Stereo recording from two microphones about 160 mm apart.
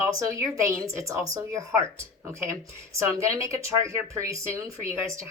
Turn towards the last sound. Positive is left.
turn(degrees=-20)  # may be behind; listen again after turning